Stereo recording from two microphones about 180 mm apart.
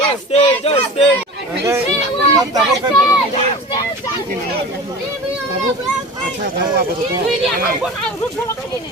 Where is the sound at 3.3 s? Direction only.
25° left (ahead or behind).